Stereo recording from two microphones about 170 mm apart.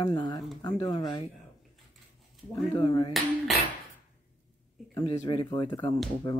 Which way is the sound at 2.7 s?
25° left (ahead or behind).